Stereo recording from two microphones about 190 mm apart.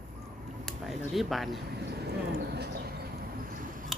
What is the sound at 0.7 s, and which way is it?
Speech, centre (ahead or behind).